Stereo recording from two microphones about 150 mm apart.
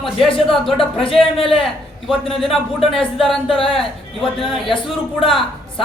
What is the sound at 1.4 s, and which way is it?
Speech, 35° left (ahead or behind).